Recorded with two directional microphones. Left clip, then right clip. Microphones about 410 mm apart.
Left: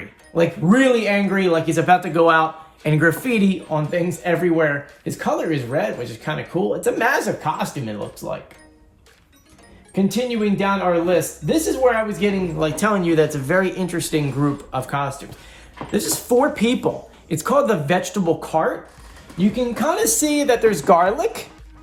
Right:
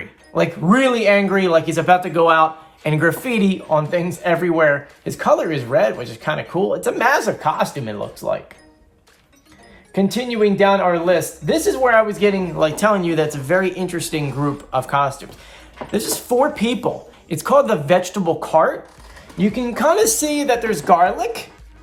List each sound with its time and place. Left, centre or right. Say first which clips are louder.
0.3 s speech: right 1 dB; centre
9.9 s speech: right 1 dB; centre